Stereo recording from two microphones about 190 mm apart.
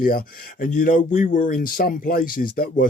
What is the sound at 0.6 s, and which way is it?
Speech, 45° left (ahead or behind).